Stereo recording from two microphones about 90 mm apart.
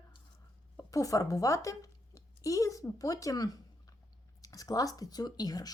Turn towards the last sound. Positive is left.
turn(degrees=45)  # may be behind; listen again after turning